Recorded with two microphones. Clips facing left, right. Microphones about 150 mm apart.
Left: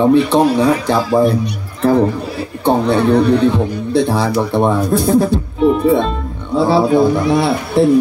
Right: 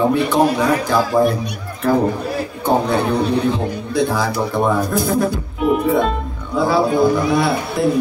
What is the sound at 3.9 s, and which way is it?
Speech, 30° left (ahead or behind).